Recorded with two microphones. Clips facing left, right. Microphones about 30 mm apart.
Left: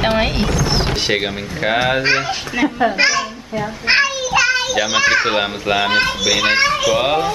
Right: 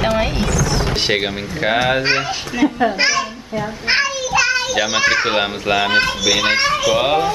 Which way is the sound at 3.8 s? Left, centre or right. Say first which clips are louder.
Left 3 dB; centre.